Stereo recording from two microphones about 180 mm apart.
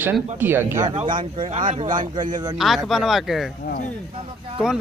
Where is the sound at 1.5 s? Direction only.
45° right (ahead or behind).